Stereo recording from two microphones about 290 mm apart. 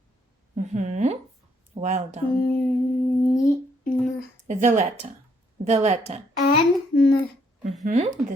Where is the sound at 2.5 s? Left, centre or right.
Centre.